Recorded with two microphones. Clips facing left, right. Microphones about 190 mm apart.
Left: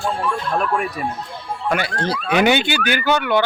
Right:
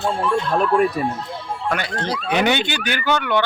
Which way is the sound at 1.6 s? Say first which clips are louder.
Left 3 dB; 10° left (ahead or behind).